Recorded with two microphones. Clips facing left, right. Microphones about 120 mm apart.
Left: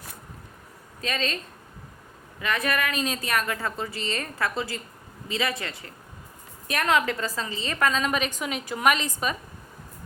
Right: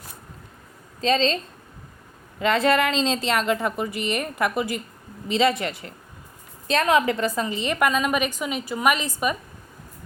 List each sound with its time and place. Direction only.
1.0 s a woman's voice: 30° right (ahead or behind)
2.4 s a woman's voice: 30° right (ahead or behind)
6.8 s a woman's voice: 15° right (ahead or behind)